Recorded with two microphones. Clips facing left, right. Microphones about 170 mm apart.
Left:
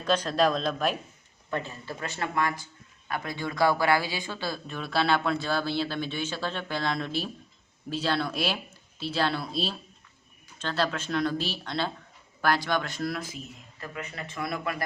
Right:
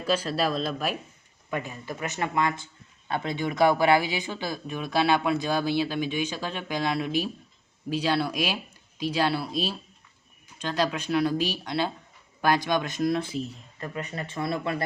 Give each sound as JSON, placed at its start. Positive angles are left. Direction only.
{"t": 0.0, "sound": "speech", "side_deg": -5}